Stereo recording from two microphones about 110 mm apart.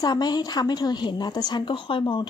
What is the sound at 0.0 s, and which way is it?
A woman's voice, 40° left (ahead or behind).